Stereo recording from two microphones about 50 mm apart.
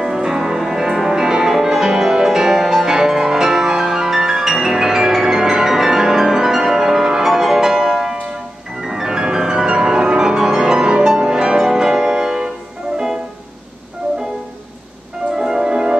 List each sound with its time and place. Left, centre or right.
0.0 s music: centre
15.3 s music: centre